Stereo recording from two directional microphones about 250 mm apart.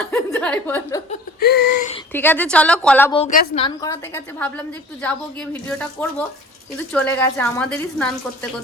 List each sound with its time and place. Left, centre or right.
0.0 s speech: centre
1.4 s a sound: left
2.1 s a woman's voice: centre
3.1 s a woman's voice: left
3.8 s a woman's voice: centre